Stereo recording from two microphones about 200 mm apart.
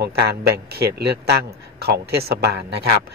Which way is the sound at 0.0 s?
55° right (ahead or behind).